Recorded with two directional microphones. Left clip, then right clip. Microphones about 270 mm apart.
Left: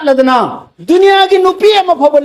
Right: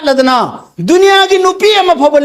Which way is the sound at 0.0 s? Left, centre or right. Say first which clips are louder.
Left 1 dB; right.